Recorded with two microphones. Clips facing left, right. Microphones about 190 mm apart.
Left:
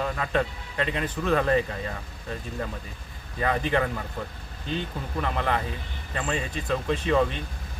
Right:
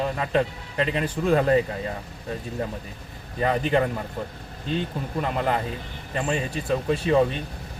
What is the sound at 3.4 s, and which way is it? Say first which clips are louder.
Speech: right 3 dB; 25° right (ahead or behind).